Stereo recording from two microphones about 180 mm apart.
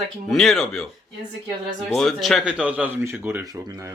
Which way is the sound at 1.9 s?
Centre (ahead or behind).